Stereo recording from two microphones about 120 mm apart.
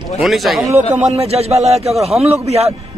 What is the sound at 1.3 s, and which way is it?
Speech, 60° right (ahead or behind).